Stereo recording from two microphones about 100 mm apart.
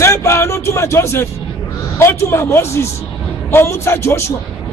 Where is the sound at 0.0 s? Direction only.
30° left (ahead or behind).